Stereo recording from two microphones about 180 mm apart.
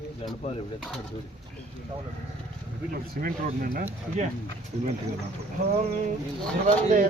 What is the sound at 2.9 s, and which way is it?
Speech, 50° right (ahead or behind).